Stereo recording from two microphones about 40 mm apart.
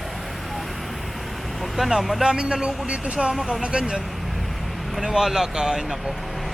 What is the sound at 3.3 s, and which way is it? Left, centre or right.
Speech, centre.